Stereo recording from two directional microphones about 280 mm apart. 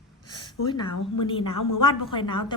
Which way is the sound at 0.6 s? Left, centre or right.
Left.